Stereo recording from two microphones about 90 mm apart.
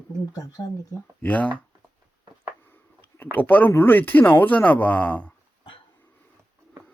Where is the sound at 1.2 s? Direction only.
15° left (ahead or behind).